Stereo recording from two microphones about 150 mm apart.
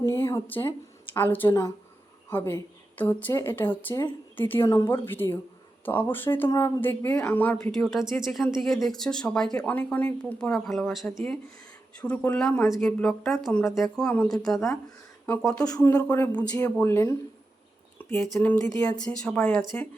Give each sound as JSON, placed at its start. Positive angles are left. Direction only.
{"t": 0.0, "sound": "speech", "side_deg": 20}
{"t": 17.9, "sound": "a sound", "side_deg": 10}
{"t": 18.3, "sound": "speech", "side_deg": 10}